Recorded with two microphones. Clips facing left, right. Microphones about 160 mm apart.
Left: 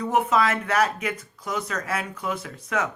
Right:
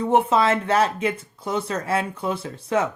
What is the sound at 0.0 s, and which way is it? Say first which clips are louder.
Speech: right 3 dB; 30° right (ahead or behind).